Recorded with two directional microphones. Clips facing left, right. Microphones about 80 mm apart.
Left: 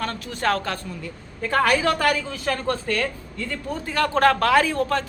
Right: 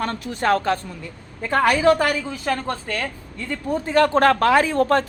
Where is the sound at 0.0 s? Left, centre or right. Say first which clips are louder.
Right 2 dB; right.